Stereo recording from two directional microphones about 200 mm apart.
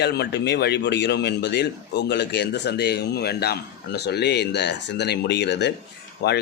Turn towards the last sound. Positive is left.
turn(degrees=55)  # may be behind; listen again after turning